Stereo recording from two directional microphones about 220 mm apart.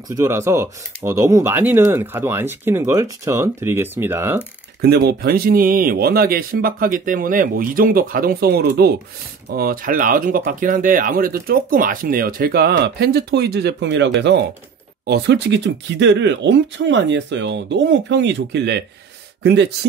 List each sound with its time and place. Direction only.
0.1 s speech: 10° right (ahead or behind)
4.8 s speech: 45° right (ahead or behind)